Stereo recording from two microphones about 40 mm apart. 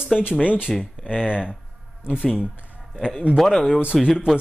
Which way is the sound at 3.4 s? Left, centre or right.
Centre.